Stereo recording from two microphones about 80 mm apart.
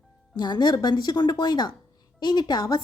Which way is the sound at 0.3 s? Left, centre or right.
Left.